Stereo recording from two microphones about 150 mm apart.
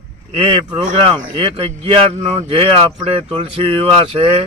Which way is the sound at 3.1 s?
40° right (ahead or behind).